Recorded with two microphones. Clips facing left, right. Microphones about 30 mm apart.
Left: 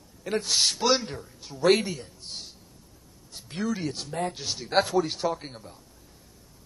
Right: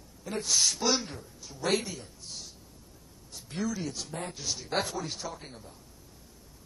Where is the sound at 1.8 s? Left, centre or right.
Left.